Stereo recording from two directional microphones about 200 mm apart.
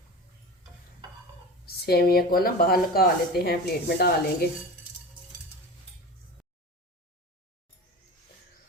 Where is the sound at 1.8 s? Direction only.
50° left (ahead or behind).